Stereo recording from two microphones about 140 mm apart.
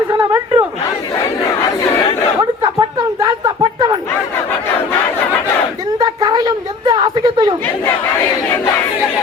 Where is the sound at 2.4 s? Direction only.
25° right (ahead or behind).